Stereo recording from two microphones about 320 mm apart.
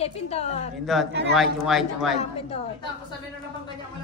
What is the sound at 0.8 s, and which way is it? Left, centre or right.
Speech, centre.